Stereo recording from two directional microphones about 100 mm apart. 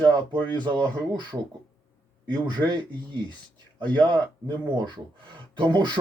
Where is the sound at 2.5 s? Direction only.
50° right (ahead or behind).